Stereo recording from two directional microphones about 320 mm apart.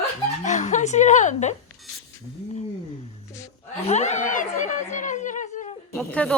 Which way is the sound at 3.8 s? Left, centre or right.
Left.